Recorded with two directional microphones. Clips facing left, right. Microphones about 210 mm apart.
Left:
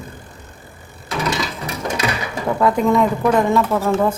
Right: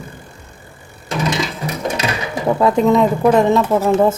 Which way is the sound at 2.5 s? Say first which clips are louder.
Right 2 dB; 25° right (ahead or behind).